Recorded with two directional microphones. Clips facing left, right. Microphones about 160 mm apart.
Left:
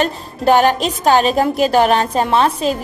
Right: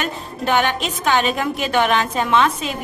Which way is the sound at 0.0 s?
40° left (ahead or behind).